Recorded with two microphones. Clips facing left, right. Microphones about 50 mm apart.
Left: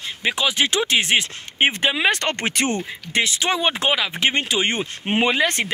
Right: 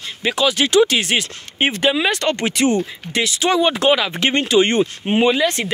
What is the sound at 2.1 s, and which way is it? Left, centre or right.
Speech, left.